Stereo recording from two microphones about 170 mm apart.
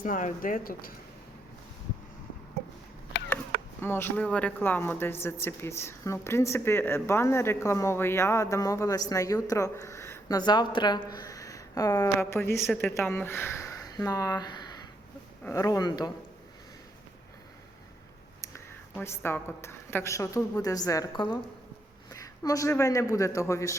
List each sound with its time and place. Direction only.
0.0 s speech: 50° left (ahead or behind)
3.8 s speech: 15° left (ahead or behind)
18.4 s a woman's voice: 15° left (ahead or behind)